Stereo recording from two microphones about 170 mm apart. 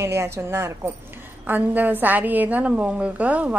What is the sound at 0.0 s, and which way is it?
A woman's voice, 15° right (ahead or behind).